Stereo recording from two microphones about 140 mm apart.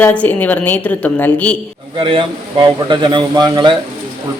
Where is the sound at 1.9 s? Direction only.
35° right (ahead or behind).